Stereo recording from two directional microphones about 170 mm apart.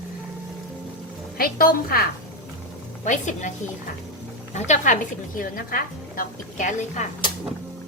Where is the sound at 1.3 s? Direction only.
60° left (ahead or behind).